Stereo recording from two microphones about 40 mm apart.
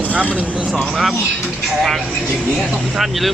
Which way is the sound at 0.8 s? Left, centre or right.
Centre.